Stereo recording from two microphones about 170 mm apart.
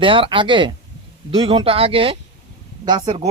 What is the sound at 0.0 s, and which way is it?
A man's voice, 30° right (ahead or behind).